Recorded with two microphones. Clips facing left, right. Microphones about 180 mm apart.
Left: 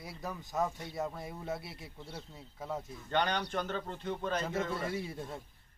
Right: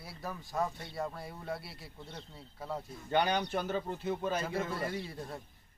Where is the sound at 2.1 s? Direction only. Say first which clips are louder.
Left 1 dB; 5° left (ahead or behind).